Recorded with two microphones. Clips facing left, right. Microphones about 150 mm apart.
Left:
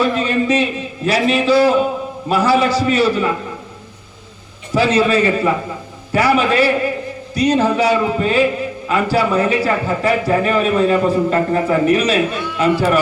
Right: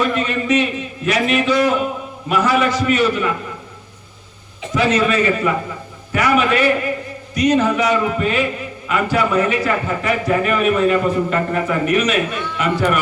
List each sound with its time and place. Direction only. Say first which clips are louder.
0.0 s a man's voice: left 3 dB; 30° left (ahead or behind)
4.7 s a man's voice: left 2 dB; 30° left (ahead or behind)